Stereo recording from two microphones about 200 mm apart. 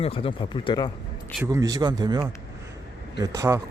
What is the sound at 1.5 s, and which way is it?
Speech, 20° right (ahead or behind).